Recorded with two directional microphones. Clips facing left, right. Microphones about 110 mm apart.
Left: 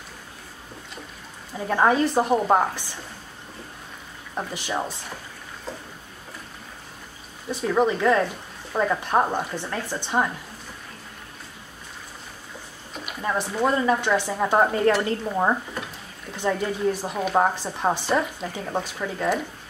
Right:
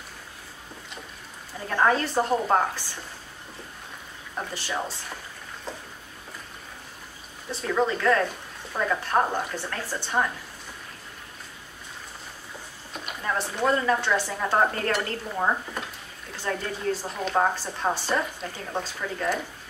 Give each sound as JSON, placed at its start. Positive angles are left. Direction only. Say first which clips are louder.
{"t": 1.7, "sound": "speech", "louder": "left 3 dB", "side_deg": 15}
{"t": 4.4, "sound": "speech", "louder": "left 3 dB", "side_deg": 15}
{"t": 7.6, "sound": "speech", "louder": "left 3 dB", "side_deg": 15}
{"t": 13.2, "sound": "speech", "louder": "left 3 dB", "side_deg": 15}